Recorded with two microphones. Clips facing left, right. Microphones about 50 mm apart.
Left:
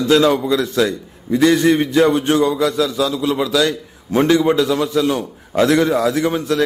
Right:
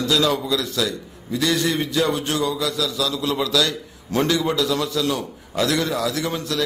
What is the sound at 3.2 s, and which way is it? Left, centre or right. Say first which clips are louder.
A man's voice: left 3 dB; centre.